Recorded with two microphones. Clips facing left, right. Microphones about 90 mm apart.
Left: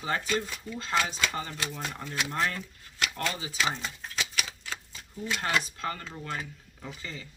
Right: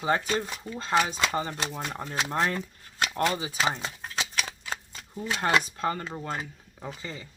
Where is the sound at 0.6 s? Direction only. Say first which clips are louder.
Right 5 dB; 45° right (ahead or behind).